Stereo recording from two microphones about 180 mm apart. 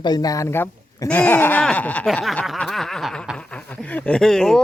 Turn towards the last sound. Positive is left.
turn(degrees=5)  # may be behind; listen again after turning